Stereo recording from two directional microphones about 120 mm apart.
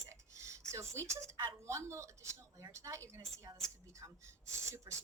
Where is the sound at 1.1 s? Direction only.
25° right (ahead or behind).